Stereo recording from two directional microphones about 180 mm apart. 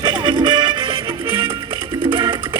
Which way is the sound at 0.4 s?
25° right (ahead or behind).